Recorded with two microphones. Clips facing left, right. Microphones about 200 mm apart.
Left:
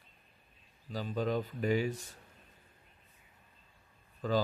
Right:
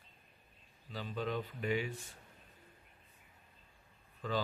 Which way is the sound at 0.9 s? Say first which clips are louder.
Left 5 dB; 40° left (ahead or behind).